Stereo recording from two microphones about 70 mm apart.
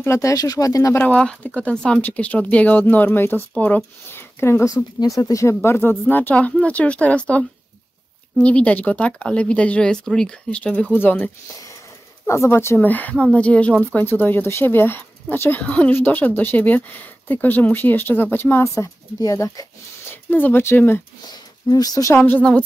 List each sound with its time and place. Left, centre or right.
0.0 s speech: left
0.3 s speech: left
1.1 s speech: centre
4.1 s a sound: left
4.6 s speech: left
5.6 s speech: left; by 11.0 s centre
11.0 s speech: left
12.3 s speech: left
12.8 s speech: left
15.6 s speech: centre
19.1 s speech: left
20.1 s speech: left
21.3 s speech: left
22.1 s speech: left